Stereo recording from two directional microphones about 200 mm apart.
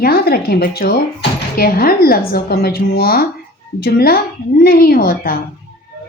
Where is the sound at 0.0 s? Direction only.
50° left (ahead or behind).